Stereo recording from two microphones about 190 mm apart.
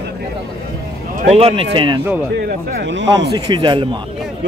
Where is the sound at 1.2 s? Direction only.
30° right (ahead or behind).